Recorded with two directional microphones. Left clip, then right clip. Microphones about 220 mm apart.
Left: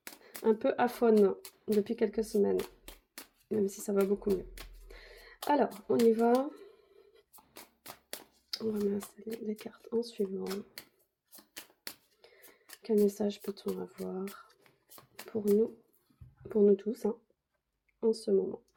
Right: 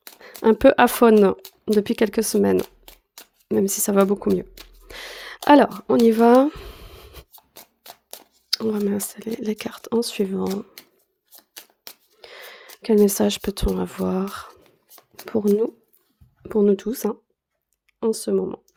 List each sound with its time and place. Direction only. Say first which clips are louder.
0.2 s speech: right 13 dB; 50° right (ahead or behind)
6.1 s a sound: right 13 dB; 50° right (ahead or behind)
8.4 s speech: right 10 dB; 45° right (ahead or behind)
12.2 s speech: right 19 dB; 45° right (ahead or behind)